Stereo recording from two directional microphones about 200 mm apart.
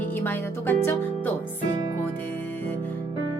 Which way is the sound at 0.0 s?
10° left (ahead or behind).